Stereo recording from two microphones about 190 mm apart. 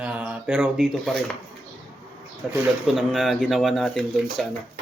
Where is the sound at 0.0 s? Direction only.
5° right (ahead or behind).